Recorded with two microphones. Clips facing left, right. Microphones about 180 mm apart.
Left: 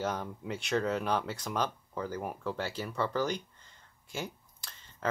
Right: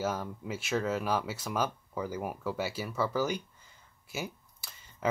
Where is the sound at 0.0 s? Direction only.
5° right (ahead or behind).